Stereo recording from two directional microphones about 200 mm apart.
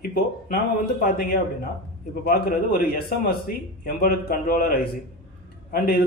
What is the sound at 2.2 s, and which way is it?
A man's voice, 50° left (ahead or behind).